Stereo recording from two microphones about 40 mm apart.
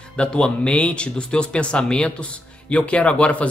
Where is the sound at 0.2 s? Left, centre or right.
Left.